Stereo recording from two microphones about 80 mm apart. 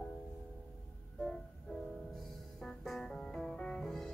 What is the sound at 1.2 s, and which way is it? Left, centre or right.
Music, centre.